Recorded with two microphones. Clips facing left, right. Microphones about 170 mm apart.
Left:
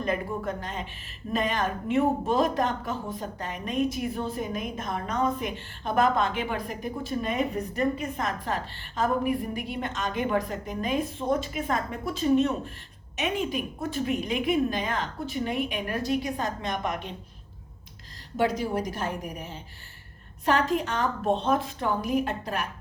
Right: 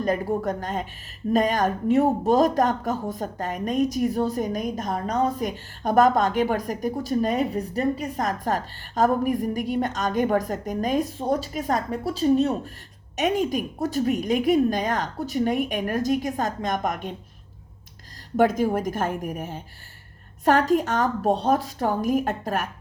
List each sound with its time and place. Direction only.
0.0 s a woman's voice: 40° right (ahead or behind)
18.3 s a woman's voice: 50° right (ahead or behind)